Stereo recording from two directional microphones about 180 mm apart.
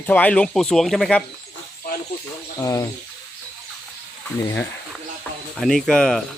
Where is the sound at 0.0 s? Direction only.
10° left (ahead or behind).